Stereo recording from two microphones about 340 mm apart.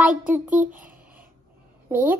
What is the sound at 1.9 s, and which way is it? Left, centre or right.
Speech, centre.